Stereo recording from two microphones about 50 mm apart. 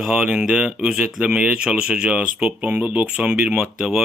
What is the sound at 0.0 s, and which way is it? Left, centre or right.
Speech, centre.